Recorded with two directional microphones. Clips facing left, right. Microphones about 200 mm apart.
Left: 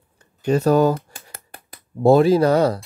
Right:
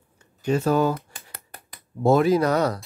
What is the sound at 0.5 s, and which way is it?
Speech, 40° left (ahead or behind).